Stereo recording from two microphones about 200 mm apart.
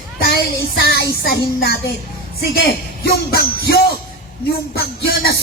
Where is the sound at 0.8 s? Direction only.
50° left (ahead or behind).